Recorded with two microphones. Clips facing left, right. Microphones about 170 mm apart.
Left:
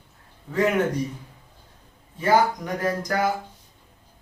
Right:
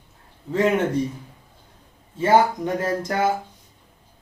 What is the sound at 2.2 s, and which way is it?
A man's voice, 25° right (ahead or behind).